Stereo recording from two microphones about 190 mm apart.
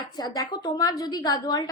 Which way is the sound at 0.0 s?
20° left (ahead or behind).